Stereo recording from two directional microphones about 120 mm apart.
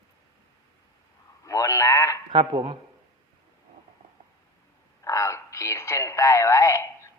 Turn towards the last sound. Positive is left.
turn(degrees=25)  # may be behind; listen again after turning